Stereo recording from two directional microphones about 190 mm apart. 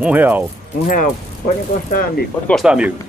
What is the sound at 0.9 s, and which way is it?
Speech, 45° left (ahead or behind).